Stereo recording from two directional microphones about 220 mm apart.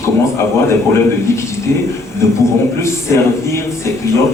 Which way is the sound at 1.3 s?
10° left (ahead or behind).